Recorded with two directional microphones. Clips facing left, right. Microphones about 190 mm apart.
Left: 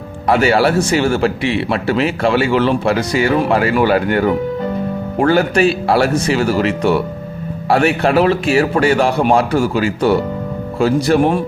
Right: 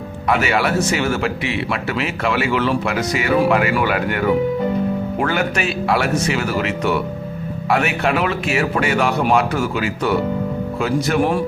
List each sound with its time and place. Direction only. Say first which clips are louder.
0.3 s speech: left 5 dB; 35° left (ahead or behind)